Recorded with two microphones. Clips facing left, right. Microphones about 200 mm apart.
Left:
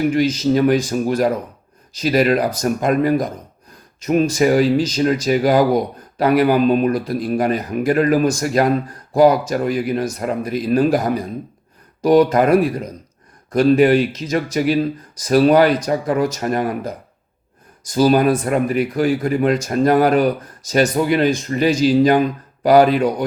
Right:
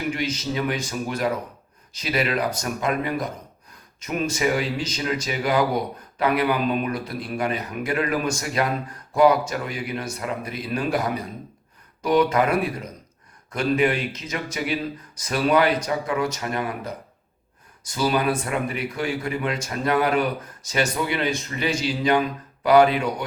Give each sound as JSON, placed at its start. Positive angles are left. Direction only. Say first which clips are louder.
{"t": 0.1, "sound": "speech", "louder": "left 11 dB", "side_deg": 35}
{"t": 17.9, "sound": "speech", "louder": "left 8 dB", "side_deg": 40}